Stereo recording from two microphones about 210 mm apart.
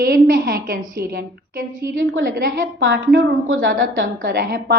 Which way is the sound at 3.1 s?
65° right (ahead or behind).